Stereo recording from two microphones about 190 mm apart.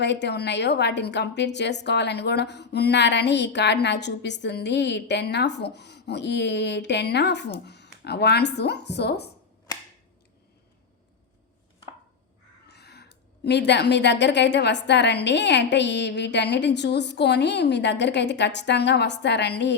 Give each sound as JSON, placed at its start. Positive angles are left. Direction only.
{"t": 0.0, "sound": "a woman's voice", "side_deg": 65}
{"t": 12.6, "sound": "a woman's voice", "side_deg": 60}